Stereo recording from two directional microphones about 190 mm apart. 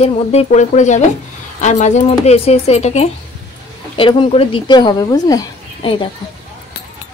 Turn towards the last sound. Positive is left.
turn(degrees=25)  # may be behind; listen again after turning